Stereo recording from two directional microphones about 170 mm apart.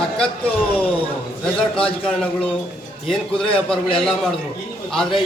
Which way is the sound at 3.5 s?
5° left (ahead or behind).